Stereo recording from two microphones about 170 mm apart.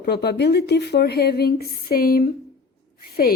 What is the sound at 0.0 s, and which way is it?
A woman's voice, 75° left (ahead or behind).